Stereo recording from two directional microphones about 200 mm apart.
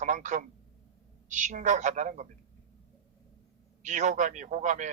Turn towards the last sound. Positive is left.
turn(degrees=-40)  # may be behind; listen again after turning